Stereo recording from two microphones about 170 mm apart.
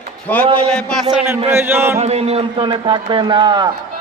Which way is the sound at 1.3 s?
15° right (ahead or behind).